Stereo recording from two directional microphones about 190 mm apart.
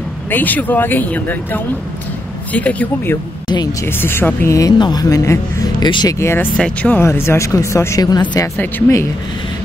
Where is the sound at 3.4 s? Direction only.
20° left (ahead or behind).